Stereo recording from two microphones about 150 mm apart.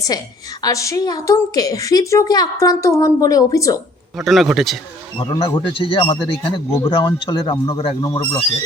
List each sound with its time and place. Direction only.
0.6 s a woman's voice: 20° left (ahead or behind)
4.2 s a man's voice: centre (ahead or behind)
5.3 s speech: 35° left (ahead or behind)